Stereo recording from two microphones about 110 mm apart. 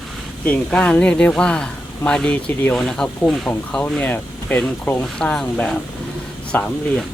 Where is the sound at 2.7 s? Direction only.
5° left (ahead or behind).